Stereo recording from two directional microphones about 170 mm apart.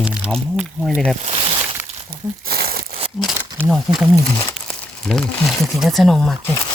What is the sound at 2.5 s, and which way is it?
Crumpling, 65° right (ahead or behind).